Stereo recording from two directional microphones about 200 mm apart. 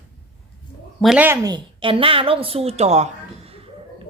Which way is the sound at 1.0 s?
5° right (ahead or behind).